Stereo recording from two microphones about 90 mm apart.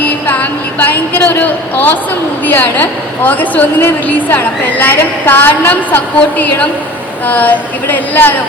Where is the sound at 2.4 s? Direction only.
20° left (ahead or behind).